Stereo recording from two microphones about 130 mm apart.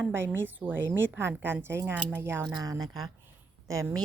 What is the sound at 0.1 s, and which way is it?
Speech, 20° right (ahead or behind).